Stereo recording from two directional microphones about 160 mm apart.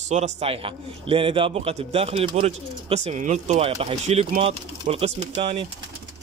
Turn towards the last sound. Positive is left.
turn(degrees=-35)  # may be behind; listen again after turning